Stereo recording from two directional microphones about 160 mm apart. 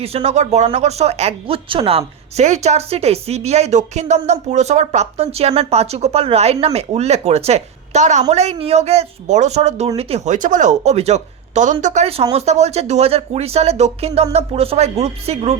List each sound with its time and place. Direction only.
0.0 s speech: 40° right (ahead or behind)